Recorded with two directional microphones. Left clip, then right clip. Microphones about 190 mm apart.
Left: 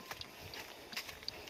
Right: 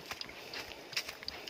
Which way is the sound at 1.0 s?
15° right (ahead or behind).